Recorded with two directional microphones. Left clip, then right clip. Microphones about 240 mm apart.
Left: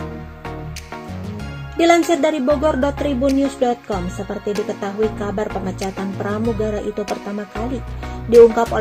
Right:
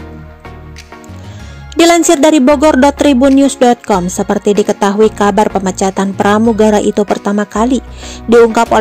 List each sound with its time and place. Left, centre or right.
1.8 s speech: right